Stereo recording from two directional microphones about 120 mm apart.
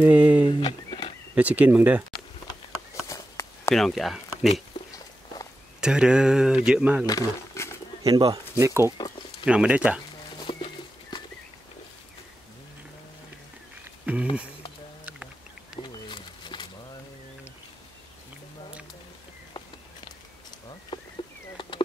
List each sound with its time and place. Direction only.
0.0 s speech: 10° right (ahead or behind)
0.5 s a sound: 40° left (ahead or behind)
1.3 s speech: 10° right (ahead or behind)
3.1 s walk: 25° left (ahead or behind)
3.7 s speech: centre (ahead or behind)
5.8 s speech: 5° right (ahead or behind)
7.1 s speech: 25° left (ahead or behind)
8.0 s speech: 30° right (ahead or behind)
9.4 s speech: 10° right (ahead or behind)
10.3 s a sound: 45° left (ahead or behind)
14.1 s speech: 15° right (ahead or behind)
15.8 s a sound: 40° left (ahead or behind)
20.9 s a sound: 40° left (ahead or behind)